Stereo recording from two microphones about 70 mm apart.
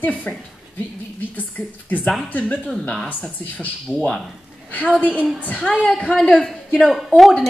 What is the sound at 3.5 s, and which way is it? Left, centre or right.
Speech, left.